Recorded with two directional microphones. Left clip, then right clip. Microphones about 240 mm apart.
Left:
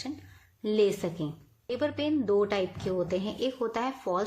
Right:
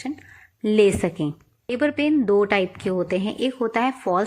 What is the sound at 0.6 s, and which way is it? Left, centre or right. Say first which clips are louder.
A woman's voice: right 8 dB; right.